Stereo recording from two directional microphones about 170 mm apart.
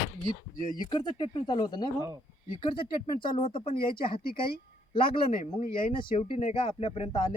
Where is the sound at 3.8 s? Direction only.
60° left (ahead or behind).